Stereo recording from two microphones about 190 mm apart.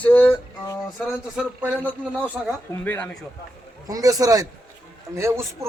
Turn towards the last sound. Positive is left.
turn(degrees=-15)  # may be behind; listen again after turning